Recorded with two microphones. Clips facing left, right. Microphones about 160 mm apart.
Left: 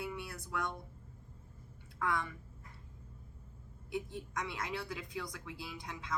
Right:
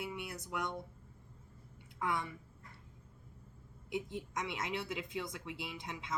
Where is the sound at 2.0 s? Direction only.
20° right (ahead or behind).